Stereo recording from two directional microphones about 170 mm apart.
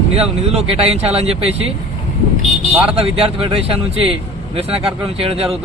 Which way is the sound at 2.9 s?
35° right (ahead or behind).